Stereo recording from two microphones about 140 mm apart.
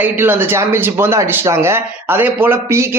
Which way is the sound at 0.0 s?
15° right (ahead or behind).